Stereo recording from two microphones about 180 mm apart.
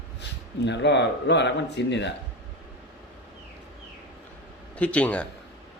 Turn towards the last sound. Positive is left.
turn(degrees=5)  # may be behind; listen again after turning